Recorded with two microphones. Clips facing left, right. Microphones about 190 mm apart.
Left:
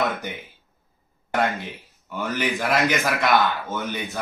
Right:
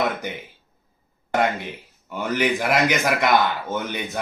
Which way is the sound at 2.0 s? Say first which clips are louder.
Right 3 dB; 15° right (ahead or behind).